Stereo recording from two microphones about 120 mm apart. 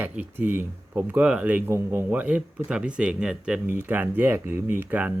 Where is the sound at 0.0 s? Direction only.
15° right (ahead or behind).